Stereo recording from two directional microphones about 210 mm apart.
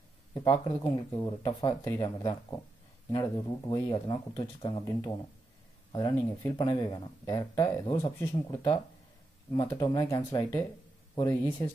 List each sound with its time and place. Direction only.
0.3 s speech: 20° left (ahead or behind)